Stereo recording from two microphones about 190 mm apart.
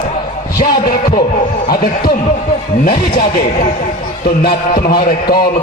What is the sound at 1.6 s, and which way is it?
A man's voice, 50° left (ahead or behind).